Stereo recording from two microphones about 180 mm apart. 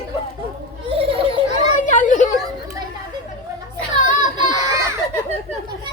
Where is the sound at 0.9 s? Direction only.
30° right (ahead or behind).